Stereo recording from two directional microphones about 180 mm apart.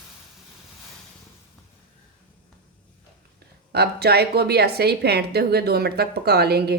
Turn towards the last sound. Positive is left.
turn(degrees=-65)  # may be behind; listen again after turning